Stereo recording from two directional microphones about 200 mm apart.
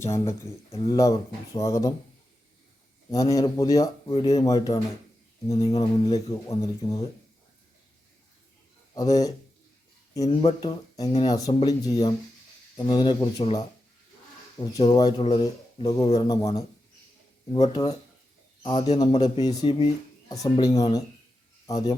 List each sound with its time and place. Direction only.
0.0 s speech: 15° left (ahead or behind)
3.1 s speech: 15° left (ahead or behind)
9.0 s speech: 20° left (ahead or behind)
10.2 s speech: 30° left (ahead or behind)
18.6 s a man's voice: 30° left (ahead or behind)